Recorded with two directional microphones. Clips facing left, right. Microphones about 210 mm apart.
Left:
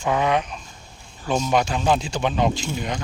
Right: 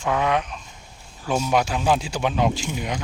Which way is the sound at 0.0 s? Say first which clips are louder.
Left 1 dB; centre (ahead or behind).